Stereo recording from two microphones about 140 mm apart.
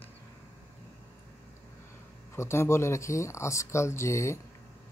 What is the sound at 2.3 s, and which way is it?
Speech, 20° left (ahead or behind).